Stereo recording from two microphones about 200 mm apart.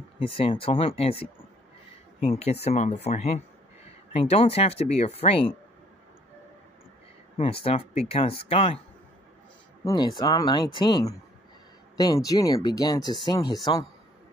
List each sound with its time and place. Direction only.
0.2 s speech: 25° left (ahead or behind)
7.6 s speech: 30° left (ahead or behind)
9.8 s speech: 20° left (ahead or behind)